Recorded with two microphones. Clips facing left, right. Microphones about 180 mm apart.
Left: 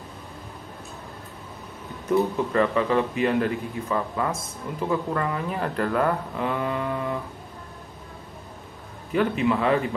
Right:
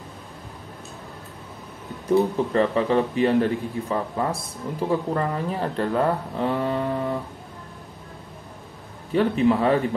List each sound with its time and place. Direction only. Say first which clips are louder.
2.0 s speech: right 2 dB; 30° right (ahead or behind)
9.1 s speech: right 3 dB; 35° right (ahead or behind)